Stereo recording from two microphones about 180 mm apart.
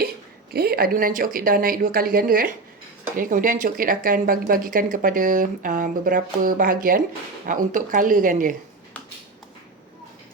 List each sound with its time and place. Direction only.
0.5 s a woman's voice: 60° right (ahead or behind)